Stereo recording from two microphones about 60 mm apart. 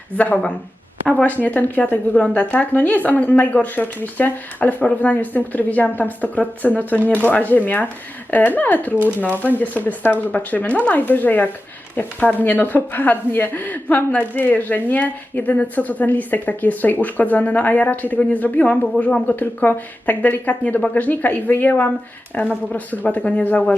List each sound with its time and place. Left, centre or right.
0.2 s a woman's voice: left
19.4 s a woman's voice: left